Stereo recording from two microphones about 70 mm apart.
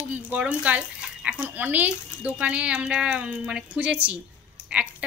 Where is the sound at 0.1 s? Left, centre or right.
Centre.